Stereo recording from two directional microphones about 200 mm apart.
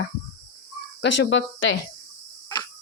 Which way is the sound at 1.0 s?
60° left (ahead or behind).